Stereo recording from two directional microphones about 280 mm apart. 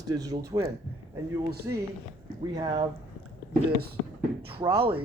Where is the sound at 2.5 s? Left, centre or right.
Centre.